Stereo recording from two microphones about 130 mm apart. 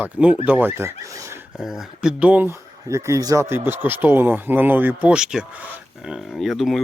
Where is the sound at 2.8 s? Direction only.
25° right (ahead or behind).